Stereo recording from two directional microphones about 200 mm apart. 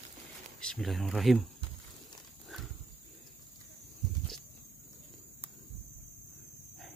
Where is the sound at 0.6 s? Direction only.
Centre (ahead or behind).